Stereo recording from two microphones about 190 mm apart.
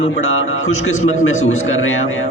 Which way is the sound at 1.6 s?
90° left.